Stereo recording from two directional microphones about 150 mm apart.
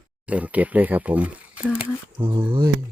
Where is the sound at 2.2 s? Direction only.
35° right (ahead or behind).